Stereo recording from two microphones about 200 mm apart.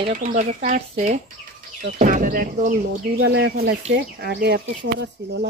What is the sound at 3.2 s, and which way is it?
Speech, 55° right (ahead or behind).